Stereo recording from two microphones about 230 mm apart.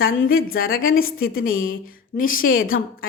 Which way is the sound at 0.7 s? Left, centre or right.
Left.